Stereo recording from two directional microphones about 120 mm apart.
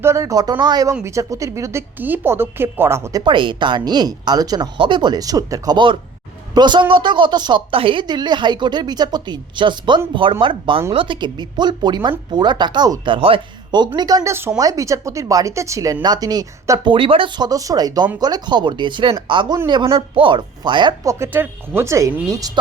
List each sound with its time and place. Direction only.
0.0 s a woman's voice: 25° right (ahead or behind)
3.3 s a woman's voice: 40° right (ahead or behind)
13.1 s a woman's voice: 50° right (ahead or behind); by 16.9 s 30° right (ahead or behind)
16.9 s a woman's voice: 50° right (ahead or behind)
21.0 s speech: 25° right (ahead or behind)
21.3 s speech: 15° right (ahead or behind)